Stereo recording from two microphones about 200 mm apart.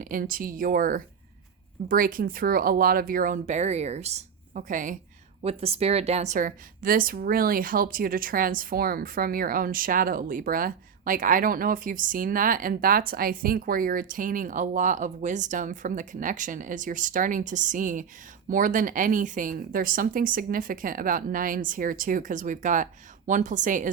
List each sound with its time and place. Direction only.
0.0 s a woman's voice: 45° right (ahead or behind)